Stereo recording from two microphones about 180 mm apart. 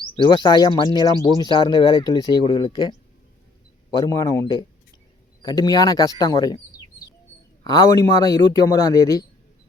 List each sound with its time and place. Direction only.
0.2 s speech: 25° left (ahead or behind)
4.0 s speech: 20° left (ahead or behind)
7.6 s speech: 25° left (ahead or behind)